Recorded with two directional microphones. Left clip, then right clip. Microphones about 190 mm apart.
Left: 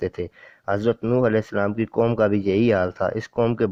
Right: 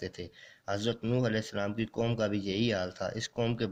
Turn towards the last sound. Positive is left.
turn(degrees=30)  # may be behind; listen again after turning